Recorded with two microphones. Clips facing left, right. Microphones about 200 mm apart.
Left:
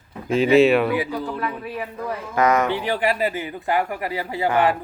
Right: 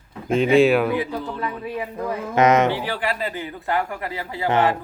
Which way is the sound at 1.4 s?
20° right (ahead or behind).